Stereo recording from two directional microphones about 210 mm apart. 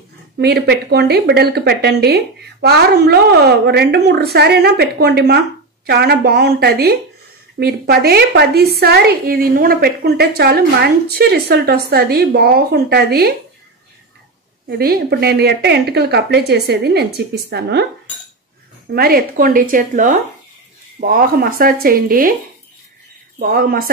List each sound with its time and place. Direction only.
0.4 s a woman's voice: 50° right (ahead or behind)
14.7 s a woman's voice: 50° right (ahead or behind)
18.9 s a woman's voice: 45° right (ahead or behind)
23.4 s a woman's voice: 45° right (ahead or behind)